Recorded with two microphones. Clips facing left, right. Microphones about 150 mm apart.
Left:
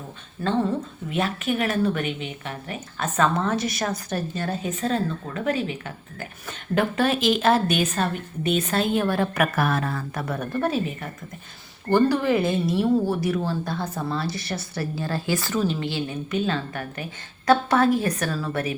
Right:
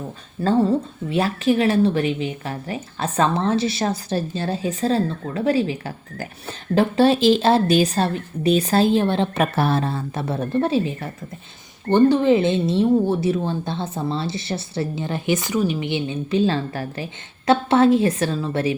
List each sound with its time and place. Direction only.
0.7 s a woman's voice: 35° right (ahead or behind)